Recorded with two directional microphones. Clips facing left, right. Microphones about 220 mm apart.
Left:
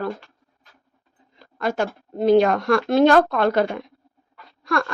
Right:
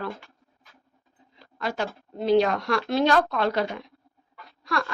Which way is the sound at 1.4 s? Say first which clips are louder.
Left 6 dB; 50° left (ahead or behind).